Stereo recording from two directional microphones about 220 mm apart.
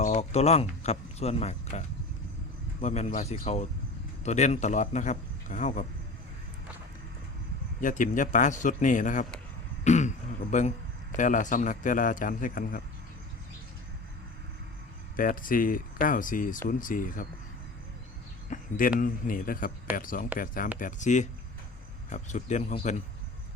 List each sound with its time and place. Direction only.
0.0 s speech: 30° left (ahead or behind)
2.8 s speech: 30° left (ahead or behind)
7.8 s speech: 35° left (ahead or behind)
9.8 s throat clearing: 35° left (ahead or behind)
11.2 s speech: 35° left (ahead or behind)
15.1 s speech: 40° left (ahead or behind)
18.5 s speech: 35° left (ahead or behind)